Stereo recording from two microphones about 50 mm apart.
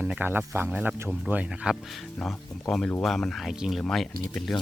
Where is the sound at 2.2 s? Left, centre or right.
Centre.